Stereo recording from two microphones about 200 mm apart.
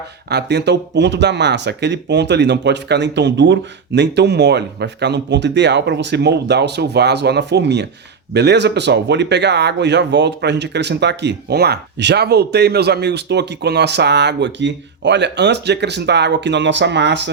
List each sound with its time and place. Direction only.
0.3 s speech: 55° right (ahead or behind)